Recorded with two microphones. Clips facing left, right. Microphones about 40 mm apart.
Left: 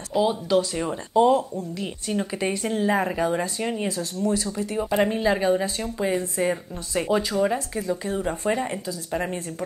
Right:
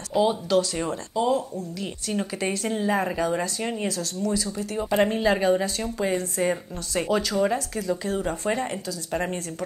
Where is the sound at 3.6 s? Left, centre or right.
Centre.